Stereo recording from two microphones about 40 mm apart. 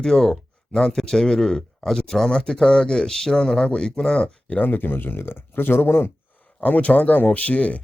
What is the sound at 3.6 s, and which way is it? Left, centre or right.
Speech, left.